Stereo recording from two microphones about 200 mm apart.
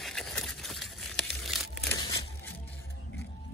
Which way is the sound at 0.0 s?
Centre (ahead or behind).